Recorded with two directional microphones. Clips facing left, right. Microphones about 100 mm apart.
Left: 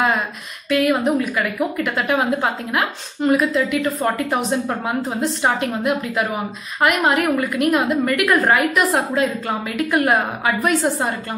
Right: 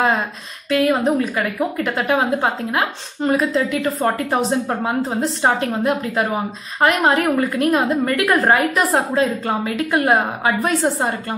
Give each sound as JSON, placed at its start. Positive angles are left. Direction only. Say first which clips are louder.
{"t": 0.7, "sound": "a woman's voice", "louder": "right 1 dB", "side_deg": -30}